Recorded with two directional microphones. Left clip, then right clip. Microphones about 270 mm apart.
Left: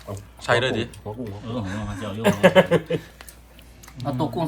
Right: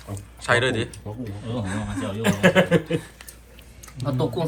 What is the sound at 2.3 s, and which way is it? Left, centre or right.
Speech, left.